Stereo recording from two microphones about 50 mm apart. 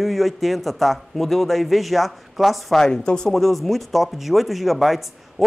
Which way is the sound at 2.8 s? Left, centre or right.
Centre.